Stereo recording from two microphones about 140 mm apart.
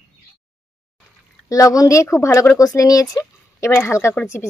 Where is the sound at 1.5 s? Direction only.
25° left (ahead or behind).